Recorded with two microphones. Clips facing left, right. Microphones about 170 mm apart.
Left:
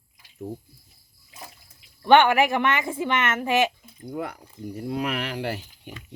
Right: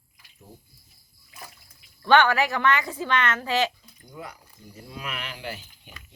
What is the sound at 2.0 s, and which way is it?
Speech, 20° left (ahead or behind).